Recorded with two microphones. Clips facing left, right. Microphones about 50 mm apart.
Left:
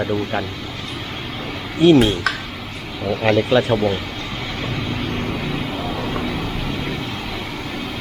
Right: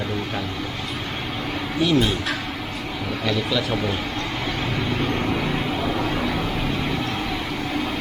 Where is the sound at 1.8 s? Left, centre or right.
Left.